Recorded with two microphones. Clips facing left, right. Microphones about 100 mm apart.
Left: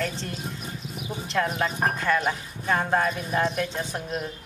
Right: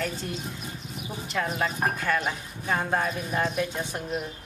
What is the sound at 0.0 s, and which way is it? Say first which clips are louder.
Speech: left 1 dB; 5° right (ahead or behind).